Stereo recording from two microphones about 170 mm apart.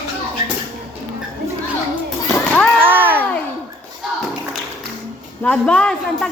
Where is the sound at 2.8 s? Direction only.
10° right (ahead or behind).